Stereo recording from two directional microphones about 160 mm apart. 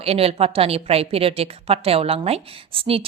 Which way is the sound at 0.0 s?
40° right (ahead or behind).